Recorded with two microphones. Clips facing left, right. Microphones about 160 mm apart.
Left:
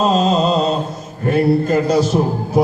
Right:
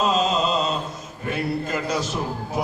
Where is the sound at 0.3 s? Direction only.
35° left (ahead or behind).